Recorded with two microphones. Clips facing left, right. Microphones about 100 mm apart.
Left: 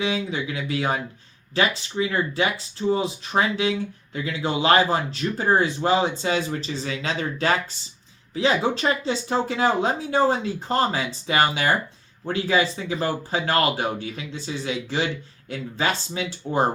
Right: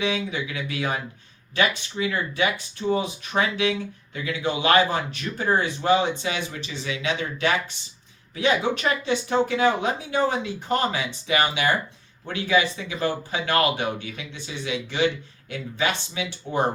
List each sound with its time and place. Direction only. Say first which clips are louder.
0.0 s speech: left 1 dB; 30° left (ahead or behind)